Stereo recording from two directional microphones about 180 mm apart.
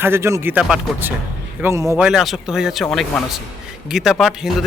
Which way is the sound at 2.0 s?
Centre (ahead or behind).